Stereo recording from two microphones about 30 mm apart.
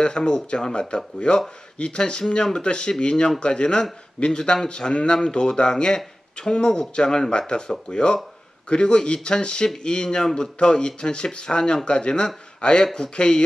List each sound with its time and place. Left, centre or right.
0.0 s speech: left